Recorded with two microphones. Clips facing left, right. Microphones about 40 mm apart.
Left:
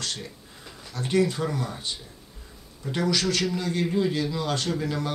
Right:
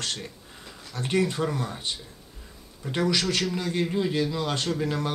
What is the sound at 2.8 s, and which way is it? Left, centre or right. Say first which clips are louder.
Speech: right 1 dB; centre.